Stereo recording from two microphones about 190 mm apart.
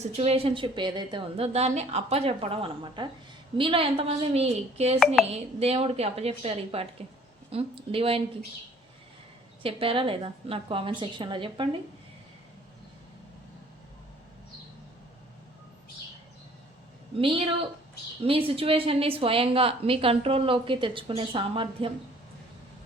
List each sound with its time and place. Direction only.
0.0 s a woman's voice: 35° right (ahead or behind)
9.6 s a woman's voice: 30° right (ahead or behind)
17.2 s a woman's voice: 30° right (ahead or behind)